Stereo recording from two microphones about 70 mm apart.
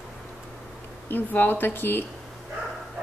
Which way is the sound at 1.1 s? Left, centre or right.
Left.